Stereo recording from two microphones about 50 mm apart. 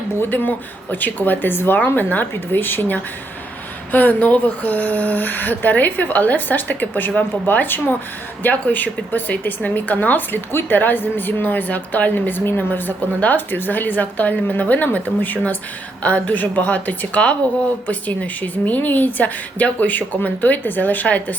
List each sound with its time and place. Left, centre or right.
0.3 s speech: left